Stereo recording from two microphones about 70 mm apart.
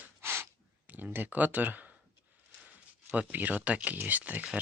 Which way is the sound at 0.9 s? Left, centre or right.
Right.